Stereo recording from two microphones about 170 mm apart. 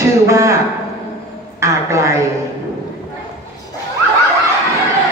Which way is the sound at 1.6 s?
15° right (ahead or behind).